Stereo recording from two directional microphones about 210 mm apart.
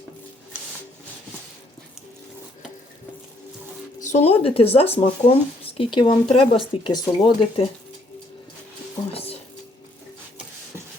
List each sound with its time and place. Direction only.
4.0 s speech: 30° left (ahead or behind)
9.1 s music: 30° left (ahead or behind)